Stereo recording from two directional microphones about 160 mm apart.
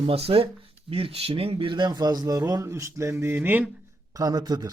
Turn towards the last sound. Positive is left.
turn(degrees=-25)  # may be behind; listen again after turning